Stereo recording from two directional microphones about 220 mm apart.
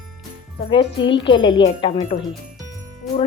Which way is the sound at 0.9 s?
20° left (ahead or behind).